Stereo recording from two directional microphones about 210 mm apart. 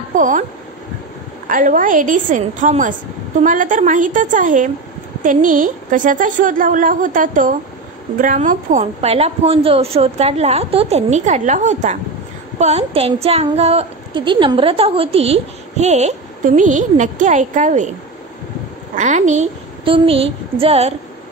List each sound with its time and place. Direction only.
0.1 s speech: 35° right (ahead or behind)
1.5 s a woman's voice: 40° right (ahead or behind)
18.9 s a woman's voice: 35° right (ahead or behind)